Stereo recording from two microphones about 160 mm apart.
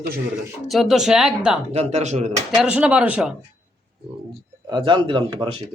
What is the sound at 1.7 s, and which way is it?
Speech, 40° right (ahead or behind).